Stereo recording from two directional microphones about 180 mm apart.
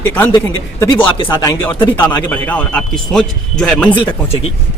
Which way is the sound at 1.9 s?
10° left (ahead or behind).